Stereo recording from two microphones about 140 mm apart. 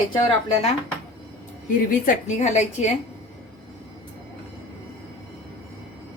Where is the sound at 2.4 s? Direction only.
55° left (ahead or behind).